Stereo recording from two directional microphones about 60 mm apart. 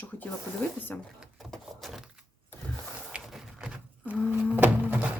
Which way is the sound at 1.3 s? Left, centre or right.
Centre.